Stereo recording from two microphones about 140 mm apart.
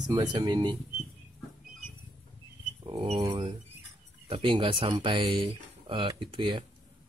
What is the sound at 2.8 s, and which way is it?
Speech, 45° right (ahead or behind).